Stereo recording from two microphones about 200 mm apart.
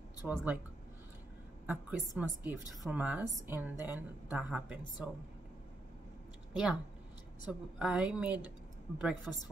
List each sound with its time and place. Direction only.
0.2 s a woman's voice: 5° right (ahead or behind)
1.7 s a woman's voice: 5° right (ahead or behind)
6.5 s a woman's voice: 5° right (ahead or behind)